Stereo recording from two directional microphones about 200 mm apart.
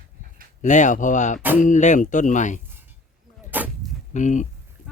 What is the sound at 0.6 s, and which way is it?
Speech, 40° left (ahead or behind).